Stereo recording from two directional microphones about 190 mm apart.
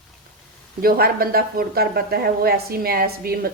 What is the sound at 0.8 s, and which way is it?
Speech, 50° right (ahead or behind).